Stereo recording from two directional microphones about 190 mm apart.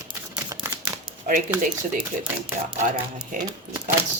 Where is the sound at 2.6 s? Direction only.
45° right (ahead or behind).